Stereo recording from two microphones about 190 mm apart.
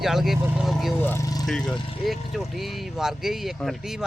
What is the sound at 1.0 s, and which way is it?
Speech, 15° left (ahead or behind).